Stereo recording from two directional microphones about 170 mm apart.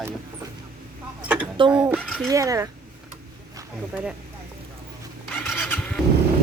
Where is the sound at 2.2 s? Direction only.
20° right (ahead or behind).